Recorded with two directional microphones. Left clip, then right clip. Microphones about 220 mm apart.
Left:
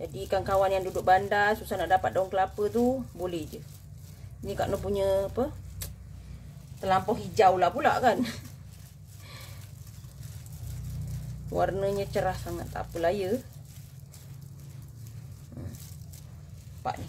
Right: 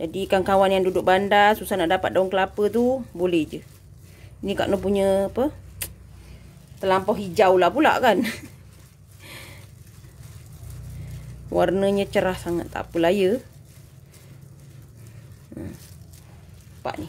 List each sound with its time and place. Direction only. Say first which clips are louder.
0.1 s a woman's voice: right 7 dB; 40° right (ahead or behind)
4.5 s a woman's voice: right 7 dB; 35° right (ahead or behind)
6.8 s a woman's voice: right 5 dB; 45° right (ahead or behind)
11.5 s a woman's voice: right 7 dB; 40° right (ahead or behind)